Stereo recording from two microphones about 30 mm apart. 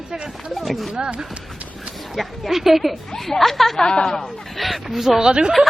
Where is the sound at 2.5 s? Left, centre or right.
Centre.